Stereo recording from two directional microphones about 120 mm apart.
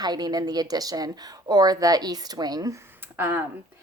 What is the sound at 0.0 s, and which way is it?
Speech, 35° right (ahead or behind).